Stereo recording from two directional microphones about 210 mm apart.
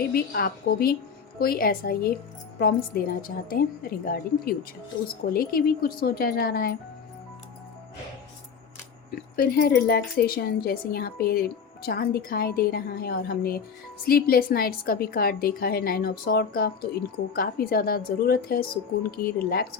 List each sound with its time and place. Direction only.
0.1 s speech: 45° left (ahead or behind)
9.3 s speech: 45° left (ahead or behind)